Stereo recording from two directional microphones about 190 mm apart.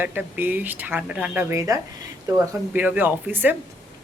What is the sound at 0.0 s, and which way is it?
Speech, 10° right (ahead or behind).